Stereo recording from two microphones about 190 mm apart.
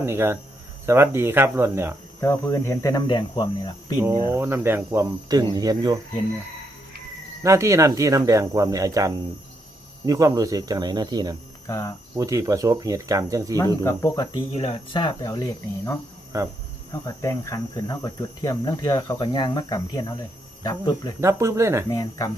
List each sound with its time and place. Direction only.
0.0 s speech: 15° right (ahead or behind)
2.2 s cricket: 15° left (ahead or behind)
4.0 s speech: 15° right (ahead or behind)
7.4 s speech: 15° right (ahead or behind)
11.6 s cricket: 15° left (ahead or behind)
12.1 s speech: 15° right (ahead or behind)
13.8 s speech: 15° left (ahead or behind)
14.5 s cricket: 30° left (ahead or behind)
16.3 s speech: 15° right (ahead or behind)
16.9 s cricket: 15° left (ahead or behind)
21.2 s speech: 15° right (ahead or behind)
21.8 s cricket: 20° left (ahead or behind)